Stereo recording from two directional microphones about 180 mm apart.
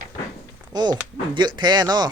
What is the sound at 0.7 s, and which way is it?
Speech, 25° right (ahead or behind).